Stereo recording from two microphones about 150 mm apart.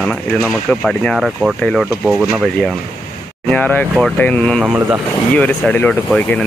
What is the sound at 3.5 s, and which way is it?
Speech, 10° left (ahead or behind).